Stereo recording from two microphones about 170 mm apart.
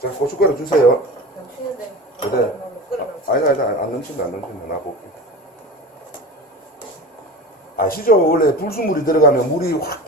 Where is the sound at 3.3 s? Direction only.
60° left (ahead or behind).